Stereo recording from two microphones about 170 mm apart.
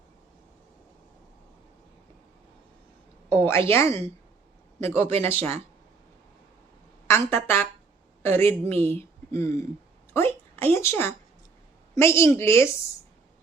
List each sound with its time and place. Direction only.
3.2 s a woman's voice: 15° left (ahead or behind)
7.1 s a woman's voice: 15° left (ahead or behind)